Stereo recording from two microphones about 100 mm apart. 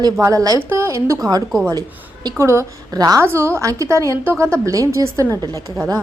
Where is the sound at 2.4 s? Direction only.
25° right (ahead or behind).